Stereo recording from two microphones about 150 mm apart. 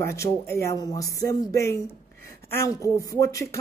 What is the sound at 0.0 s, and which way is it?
A man's voice, 20° left (ahead or behind).